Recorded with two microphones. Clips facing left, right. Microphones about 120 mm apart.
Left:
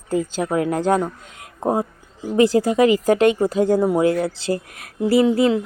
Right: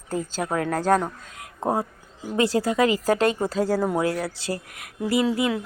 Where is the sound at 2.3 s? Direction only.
25° left (ahead or behind).